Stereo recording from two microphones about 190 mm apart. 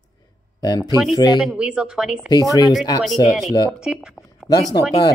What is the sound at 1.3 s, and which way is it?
Speech, 5° right (ahead or behind).